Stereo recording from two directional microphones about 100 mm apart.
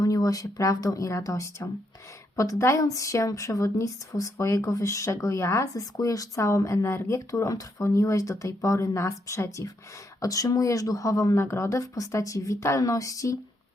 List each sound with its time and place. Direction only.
0.0 s speech: 35° left (ahead or behind)